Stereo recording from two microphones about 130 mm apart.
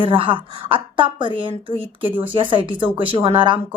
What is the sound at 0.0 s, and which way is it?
A woman's voice, 40° right (ahead or behind).